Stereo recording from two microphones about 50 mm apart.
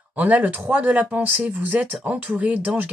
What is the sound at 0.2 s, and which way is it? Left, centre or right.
Speech, right.